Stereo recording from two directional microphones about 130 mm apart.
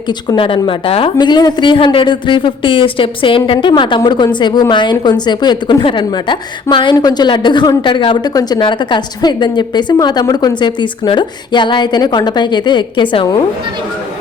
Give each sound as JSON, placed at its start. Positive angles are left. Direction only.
{"t": 0.1, "sound": "speech", "side_deg": 35}
{"t": 1.2, "sound": "speech", "side_deg": 35}